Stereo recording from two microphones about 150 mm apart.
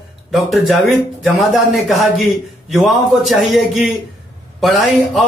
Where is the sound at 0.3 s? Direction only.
Centre (ahead or behind).